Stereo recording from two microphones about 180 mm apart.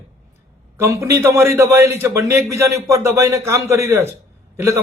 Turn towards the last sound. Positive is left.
turn(degrees=-15)  # may be behind; listen again after turning